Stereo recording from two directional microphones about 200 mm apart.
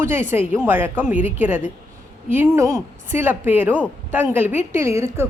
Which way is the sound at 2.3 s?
15° right (ahead or behind).